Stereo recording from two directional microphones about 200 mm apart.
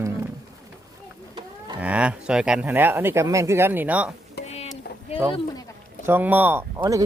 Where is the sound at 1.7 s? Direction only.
5° right (ahead or behind).